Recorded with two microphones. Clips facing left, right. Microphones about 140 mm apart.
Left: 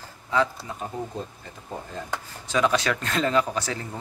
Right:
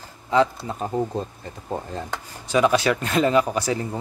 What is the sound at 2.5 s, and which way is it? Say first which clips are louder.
A man's voice: right 4 dB; 10° right (ahead or behind).